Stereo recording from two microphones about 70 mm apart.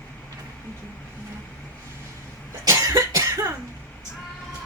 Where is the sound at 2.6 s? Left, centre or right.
Right.